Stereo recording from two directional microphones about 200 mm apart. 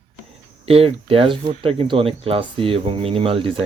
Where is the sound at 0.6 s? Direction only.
30° right (ahead or behind).